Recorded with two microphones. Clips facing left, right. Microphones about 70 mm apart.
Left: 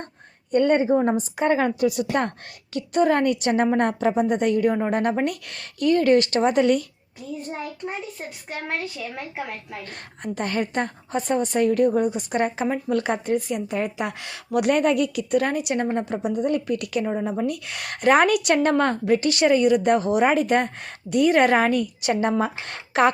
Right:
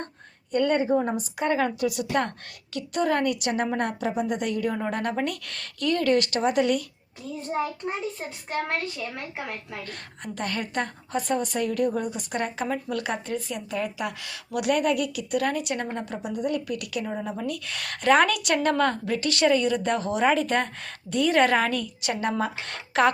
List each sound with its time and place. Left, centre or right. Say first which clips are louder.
0.5 s a woman's voice: left 4 dB; left
9.9 s a woman's voice: left 5 dB; left
17.3 s a woman's voice: left 5 dB; left
18.5 s a woman's voice: left 3 dB; left